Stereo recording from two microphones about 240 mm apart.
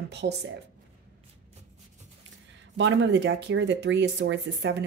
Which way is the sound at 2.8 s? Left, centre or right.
Right.